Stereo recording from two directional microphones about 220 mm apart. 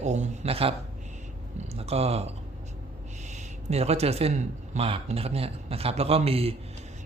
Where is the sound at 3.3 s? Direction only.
30° right (ahead or behind).